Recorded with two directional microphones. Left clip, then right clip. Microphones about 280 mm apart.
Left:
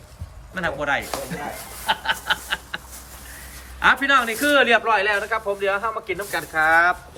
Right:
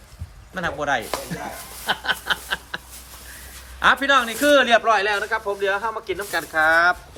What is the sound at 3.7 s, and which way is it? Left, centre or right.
A man's voice, centre.